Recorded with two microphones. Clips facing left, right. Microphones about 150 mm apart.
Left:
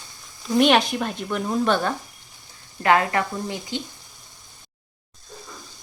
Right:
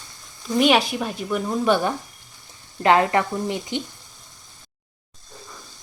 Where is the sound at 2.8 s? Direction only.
25° right (ahead or behind).